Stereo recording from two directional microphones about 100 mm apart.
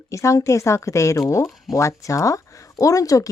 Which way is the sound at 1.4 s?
Centre (ahead or behind).